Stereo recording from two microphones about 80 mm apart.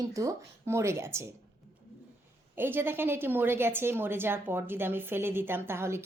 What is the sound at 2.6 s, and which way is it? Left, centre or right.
A woman's voice, right.